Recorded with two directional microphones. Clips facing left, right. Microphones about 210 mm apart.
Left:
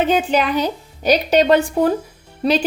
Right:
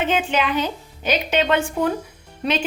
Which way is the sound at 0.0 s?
35° left (ahead or behind).